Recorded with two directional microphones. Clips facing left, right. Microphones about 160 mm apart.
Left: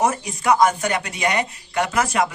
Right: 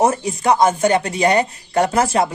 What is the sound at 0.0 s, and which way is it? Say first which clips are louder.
Speech: right 4 dB; 30° right (ahead or behind).